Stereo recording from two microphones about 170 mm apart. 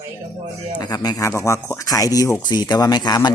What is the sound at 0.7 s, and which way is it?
Speech, 20° left (ahead or behind).